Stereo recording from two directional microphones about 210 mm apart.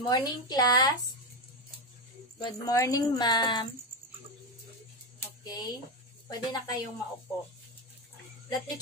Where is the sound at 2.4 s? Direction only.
15° left (ahead or behind).